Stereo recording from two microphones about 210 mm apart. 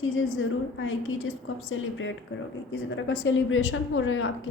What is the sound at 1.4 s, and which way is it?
A woman's voice, 65° left (ahead or behind).